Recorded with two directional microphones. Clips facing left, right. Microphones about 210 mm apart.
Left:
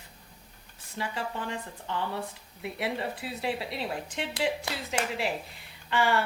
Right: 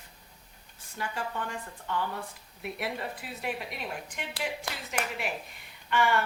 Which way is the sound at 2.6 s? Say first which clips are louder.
Left 3 dB; 25° left (ahead or behind).